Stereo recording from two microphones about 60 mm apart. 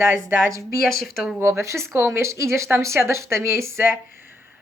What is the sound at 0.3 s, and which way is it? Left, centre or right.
Speech, right.